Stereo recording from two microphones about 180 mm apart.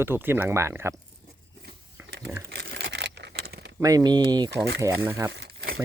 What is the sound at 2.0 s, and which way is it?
Typing, 15° right (ahead or behind).